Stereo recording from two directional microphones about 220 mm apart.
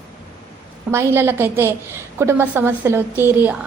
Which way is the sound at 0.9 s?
10° right (ahead or behind).